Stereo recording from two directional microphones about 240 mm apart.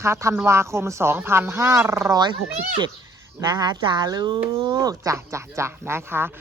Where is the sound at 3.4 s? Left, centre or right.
Centre.